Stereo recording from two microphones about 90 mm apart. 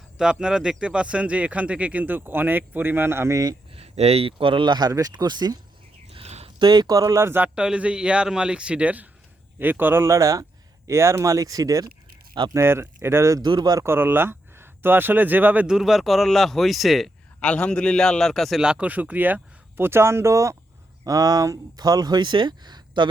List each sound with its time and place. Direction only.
0.2 s speech: 10° right (ahead or behind); by 3.4 s 30° right (ahead or behind)
3.8 s speech: 85° right; by 5.5 s 50° right (ahead or behind)
6.1 s a sound: 90° right
6.7 s speech: 50° right (ahead or behind); by 7.4 s 30° right (ahead or behind)
7.4 s speech: 10° right (ahead or behind); by 11.9 s 40° right (ahead or behind)
12.5 s speech: 25° right (ahead or behind)
13.4 s a man's voice: 55° right (ahead or behind)
13.7 s speech: 25° right (ahead or behind)
15.6 s speech: 5° right (ahead or behind)
17.4 s speech: 15° left (ahead or behind); by 23.0 s 55° right (ahead or behind)